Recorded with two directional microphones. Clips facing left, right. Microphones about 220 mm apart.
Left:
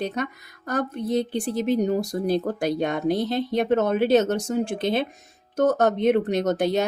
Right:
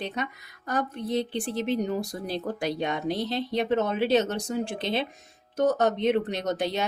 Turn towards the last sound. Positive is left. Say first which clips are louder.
# left 6 dB
turn(degrees=50)  # may be behind; listen again after turning